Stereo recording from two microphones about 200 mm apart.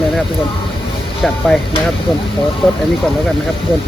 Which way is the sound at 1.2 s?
Centre (ahead or behind).